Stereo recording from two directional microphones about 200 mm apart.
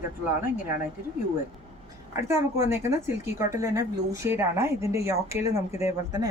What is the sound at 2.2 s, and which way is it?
Speech, 15° right (ahead or behind).